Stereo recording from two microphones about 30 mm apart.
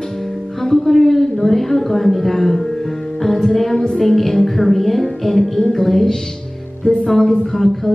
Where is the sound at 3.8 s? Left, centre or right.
Left.